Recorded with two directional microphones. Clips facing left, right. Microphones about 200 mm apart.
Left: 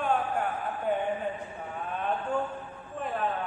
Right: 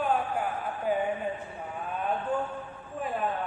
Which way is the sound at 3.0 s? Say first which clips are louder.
Right 1 dB; 5° right (ahead or behind).